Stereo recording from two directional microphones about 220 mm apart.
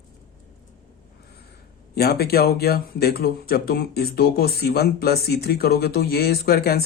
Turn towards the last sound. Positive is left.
turn(degrees=45)  # may be behind; listen again after turning